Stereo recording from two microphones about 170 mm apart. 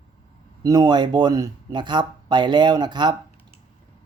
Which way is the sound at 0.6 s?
20° right (ahead or behind).